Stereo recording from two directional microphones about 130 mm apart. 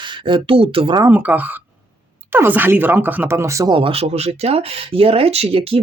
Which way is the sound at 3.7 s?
45° right (ahead or behind).